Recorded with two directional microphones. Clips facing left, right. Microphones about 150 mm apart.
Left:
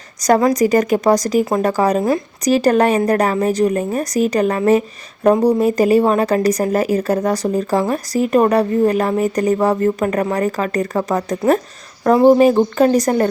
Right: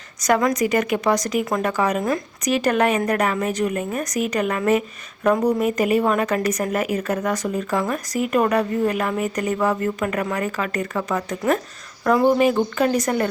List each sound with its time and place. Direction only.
0.2 s speech: 35° left (ahead or behind)